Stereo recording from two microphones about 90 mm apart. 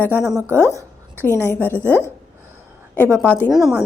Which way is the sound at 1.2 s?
25° left (ahead or behind).